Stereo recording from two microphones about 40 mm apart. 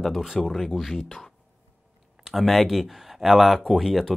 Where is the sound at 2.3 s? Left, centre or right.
Centre.